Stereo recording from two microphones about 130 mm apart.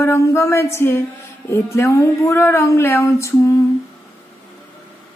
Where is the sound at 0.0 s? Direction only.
20° left (ahead or behind).